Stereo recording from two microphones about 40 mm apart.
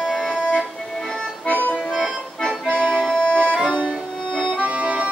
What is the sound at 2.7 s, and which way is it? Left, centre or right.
Accordion, right.